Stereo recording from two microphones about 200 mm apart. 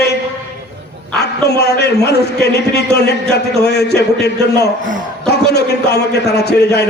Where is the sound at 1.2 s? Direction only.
55° left (ahead or behind).